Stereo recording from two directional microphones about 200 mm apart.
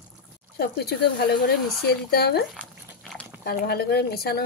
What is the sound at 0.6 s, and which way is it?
Speech, 55° left (ahead or behind).